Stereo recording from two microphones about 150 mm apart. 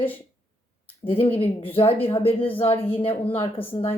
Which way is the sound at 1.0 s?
40° left (ahead or behind).